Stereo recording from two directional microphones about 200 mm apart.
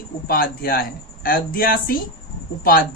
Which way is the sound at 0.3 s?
45° left (ahead or behind).